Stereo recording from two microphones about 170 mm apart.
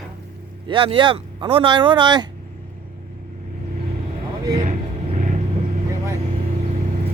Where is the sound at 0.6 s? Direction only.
30° right (ahead or behind).